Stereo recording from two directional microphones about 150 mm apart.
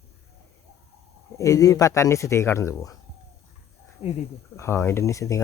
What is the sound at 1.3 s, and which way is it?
Speech, 20° left (ahead or behind).